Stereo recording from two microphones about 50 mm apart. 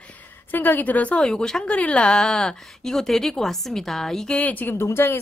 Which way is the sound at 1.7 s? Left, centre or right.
Left.